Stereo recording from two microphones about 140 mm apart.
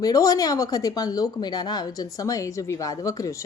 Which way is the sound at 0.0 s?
25° left (ahead or behind).